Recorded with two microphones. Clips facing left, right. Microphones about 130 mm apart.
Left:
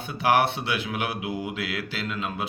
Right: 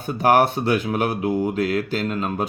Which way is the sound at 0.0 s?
45° right (ahead or behind).